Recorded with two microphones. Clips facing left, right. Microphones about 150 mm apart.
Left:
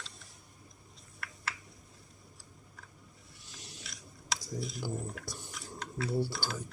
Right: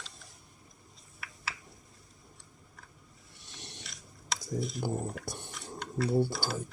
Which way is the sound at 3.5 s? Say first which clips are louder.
Right 2 dB; centre (ahead or behind).